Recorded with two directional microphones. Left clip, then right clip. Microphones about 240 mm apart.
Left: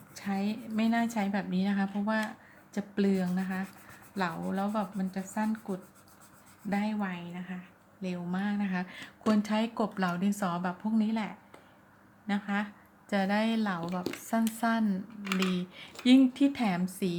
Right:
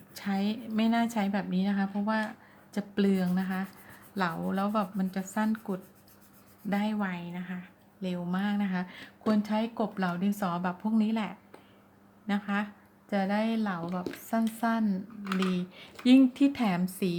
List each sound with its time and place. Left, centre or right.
0.1 s a woman's voice: centre
15.2 s speech: left
15.5 s a woman's voice: centre